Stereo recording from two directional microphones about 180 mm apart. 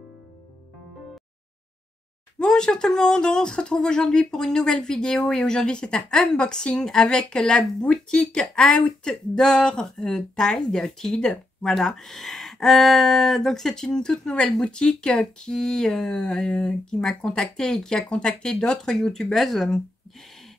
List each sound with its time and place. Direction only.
2.3 s speech: 5° left (ahead or behind)